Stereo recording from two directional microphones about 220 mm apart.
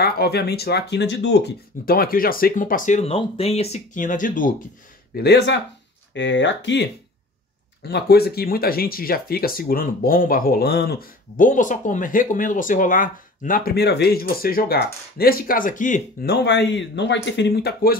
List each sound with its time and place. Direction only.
0.0 s speech: 45° left (ahead or behind)
1.9 s speech: 40° left (ahead or behind)
5.1 s speech: 45° left (ahead or behind)